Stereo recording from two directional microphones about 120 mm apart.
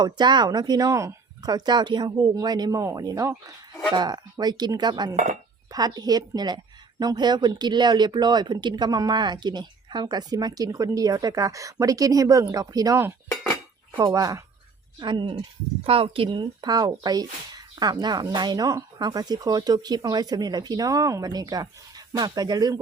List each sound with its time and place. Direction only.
0.0 s speech: 35° right (ahead or behind)
5.1 s speech: 75° right (ahead or behind)
5.7 s speech: 35° right (ahead or behind)
14.0 s speech: 30° right (ahead or behind)
14.9 s speech: 40° right (ahead or behind)